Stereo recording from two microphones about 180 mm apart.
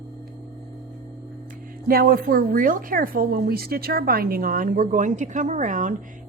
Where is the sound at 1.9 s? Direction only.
55° right (ahead or behind).